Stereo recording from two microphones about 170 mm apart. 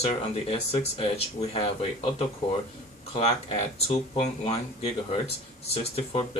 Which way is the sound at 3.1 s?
35° left (ahead or behind).